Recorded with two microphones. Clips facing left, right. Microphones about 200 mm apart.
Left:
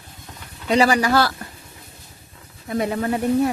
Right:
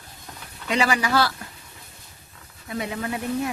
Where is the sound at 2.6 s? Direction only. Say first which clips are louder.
Left 7 dB; 45° left (ahead or behind).